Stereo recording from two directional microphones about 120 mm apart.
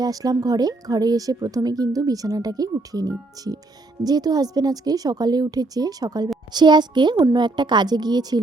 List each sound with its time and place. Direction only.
0.0 s speech: 30° right (ahead or behind)